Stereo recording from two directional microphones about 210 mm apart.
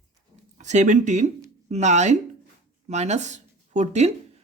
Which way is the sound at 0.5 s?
35° right (ahead or behind).